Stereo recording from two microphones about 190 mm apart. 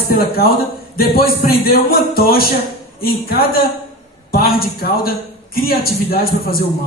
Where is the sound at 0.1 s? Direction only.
55° left (ahead or behind).